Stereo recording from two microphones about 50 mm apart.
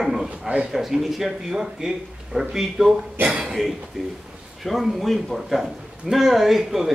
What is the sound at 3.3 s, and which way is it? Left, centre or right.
Speech, centre.